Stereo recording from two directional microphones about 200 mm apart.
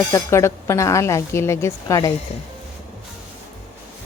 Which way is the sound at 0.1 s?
15° left (ahead or behind).